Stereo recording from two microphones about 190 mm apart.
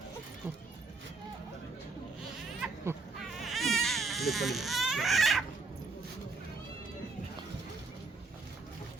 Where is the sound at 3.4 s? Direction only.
Centre (ahead or behind).